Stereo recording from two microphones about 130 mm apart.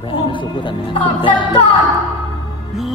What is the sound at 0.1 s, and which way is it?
A woman's voice, 40° left (ahead or behind).